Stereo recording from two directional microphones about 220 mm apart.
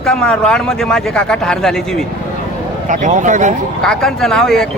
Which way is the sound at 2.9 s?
35° right (ahead or behind).